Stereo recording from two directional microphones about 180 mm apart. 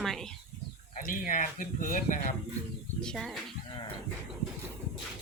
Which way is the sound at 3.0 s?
Centre (ahead or behind).